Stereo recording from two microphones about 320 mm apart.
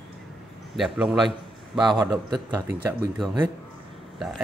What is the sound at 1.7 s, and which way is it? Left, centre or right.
Speech, centre.